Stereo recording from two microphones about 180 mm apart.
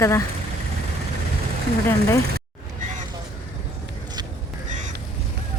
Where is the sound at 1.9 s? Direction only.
15° left (ahead or behind).